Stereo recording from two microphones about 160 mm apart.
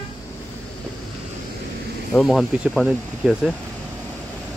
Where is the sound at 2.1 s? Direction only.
5° left (ahead or behind).